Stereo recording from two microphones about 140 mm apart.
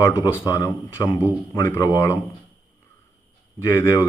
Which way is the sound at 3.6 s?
15° left (ahead or behind).